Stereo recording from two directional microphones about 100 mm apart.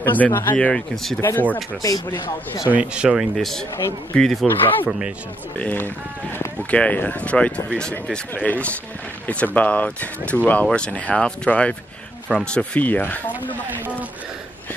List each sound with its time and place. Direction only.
0.0 s speech: 20° left (ahead or behind)
0.6 s speech: 10° left (ahead or behind)
1.8 s speech: 40° left (ahead or behind)
2.7 s speech: 10° right (ahead or behind)
3.3 s speech: 5° left (ahead or behind)
5.6 s speech: 15° left (ahead or behind)